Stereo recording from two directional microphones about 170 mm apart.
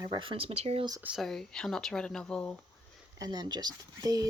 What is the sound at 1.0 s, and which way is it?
Speech, centre (ahead or behind).